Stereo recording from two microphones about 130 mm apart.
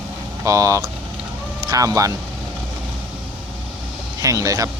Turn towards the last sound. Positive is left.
turn(degrees=-25)  # may be behind; listen again after turning